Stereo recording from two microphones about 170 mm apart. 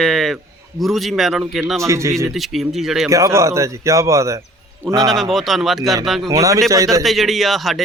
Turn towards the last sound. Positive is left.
turn(degrees=0)  # may be behind; listen again after turning